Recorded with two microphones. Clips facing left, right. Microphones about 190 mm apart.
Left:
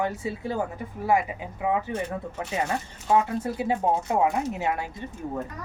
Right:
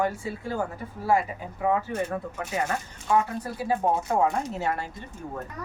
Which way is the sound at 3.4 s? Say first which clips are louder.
Left 1 dB; 20° left (ahead or behind).